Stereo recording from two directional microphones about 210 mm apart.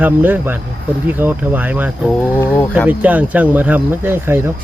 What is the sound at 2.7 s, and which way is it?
Speech, 5° right (ahead or behind).